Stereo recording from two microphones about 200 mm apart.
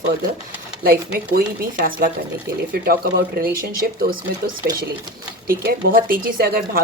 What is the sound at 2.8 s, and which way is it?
Speech, 45° right (ahead or behind).